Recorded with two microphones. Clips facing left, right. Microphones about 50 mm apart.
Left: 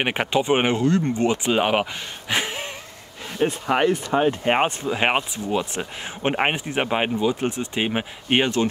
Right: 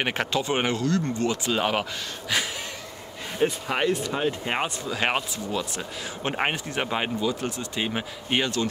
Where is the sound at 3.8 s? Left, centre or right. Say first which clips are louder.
Left 4 dB; left.